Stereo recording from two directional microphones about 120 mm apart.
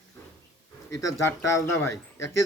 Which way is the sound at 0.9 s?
25° left (ahead or behind).